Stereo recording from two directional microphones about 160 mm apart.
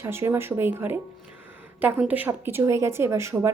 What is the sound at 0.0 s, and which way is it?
A woman's voice, 15° right (ahead or behind).